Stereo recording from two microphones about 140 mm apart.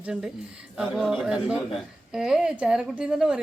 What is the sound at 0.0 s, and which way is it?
A man's voice, 5° right (ahead or behind).